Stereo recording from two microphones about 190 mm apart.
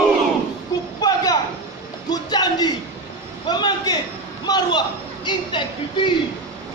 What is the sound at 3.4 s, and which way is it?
A man's voice, 20° left (ahead or behind).